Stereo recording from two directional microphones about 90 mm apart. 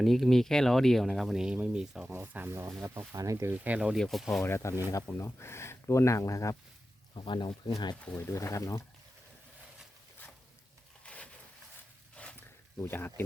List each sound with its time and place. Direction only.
0.0 s speech: centre (ahead or behind)
2.1 s speech: 20° right (ahead or behind)
3.6 s speech: 15° right (ahead or behind)
3.9 s speech: centre (ahead or behind)
4.4 s speech: 30° left (ahead or behind)
7.2 s speech: 65° left (ahead or behind)
8.1 s speech: 30° left (ahead or behind)
11.0 s a sound: 15° left (ahead or behind)
12.8 s speech: 25° left (ahead or behind)